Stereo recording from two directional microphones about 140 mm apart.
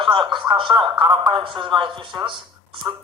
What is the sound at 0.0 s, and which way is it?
Speech, 35° right (ahead or behind).